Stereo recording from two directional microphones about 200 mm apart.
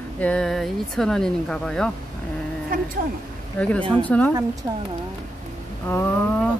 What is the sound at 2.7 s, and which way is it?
Speech, 45° right (ahead or behind).